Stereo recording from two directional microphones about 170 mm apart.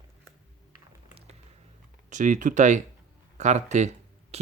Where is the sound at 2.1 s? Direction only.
50° right (ahead or behind).